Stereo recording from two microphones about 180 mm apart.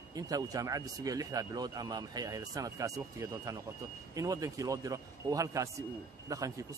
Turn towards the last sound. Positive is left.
turn(degrees=-20)  # may be behind; listen again after turning